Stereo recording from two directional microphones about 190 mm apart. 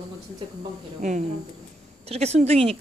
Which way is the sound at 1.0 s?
40° right (ahead or behind).